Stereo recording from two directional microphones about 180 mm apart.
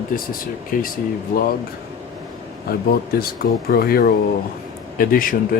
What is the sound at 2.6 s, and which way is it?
Speech, 55° left (ahead or behind).